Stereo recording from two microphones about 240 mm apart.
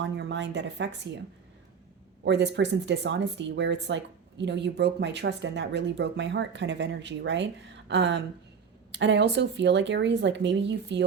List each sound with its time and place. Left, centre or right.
0.0 s speech: right
2.2 s speech: right